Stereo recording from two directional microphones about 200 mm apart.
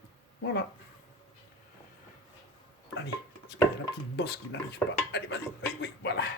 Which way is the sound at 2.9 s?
55° left (ahead or behind).